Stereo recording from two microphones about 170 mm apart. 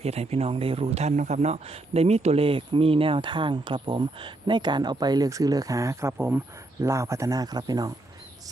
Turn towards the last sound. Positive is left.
turn(degrees=-20)  # may be behind; listen again after turning